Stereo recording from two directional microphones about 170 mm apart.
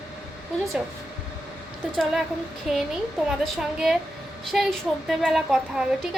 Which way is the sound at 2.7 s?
5° right (ahead or behind).